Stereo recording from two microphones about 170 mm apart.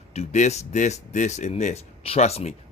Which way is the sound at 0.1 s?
40° left (ahead or behind).